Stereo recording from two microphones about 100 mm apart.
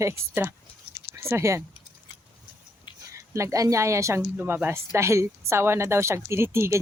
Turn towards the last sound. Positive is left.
turn(degrees=-25)  # may be behind; listen again after turning